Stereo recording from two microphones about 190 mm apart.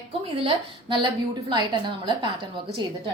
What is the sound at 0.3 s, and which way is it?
Speech, 30° right (ahead or behind).